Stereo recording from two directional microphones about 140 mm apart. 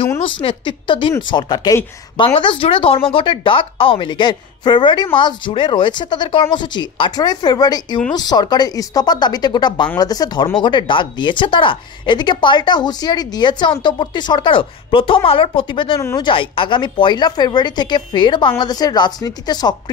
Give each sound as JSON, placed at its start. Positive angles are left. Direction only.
{"t": 0.2, "sound": "speech", "side_deg": 35}